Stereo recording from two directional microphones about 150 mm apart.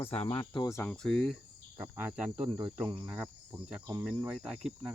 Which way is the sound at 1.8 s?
10° right (ahead or behind).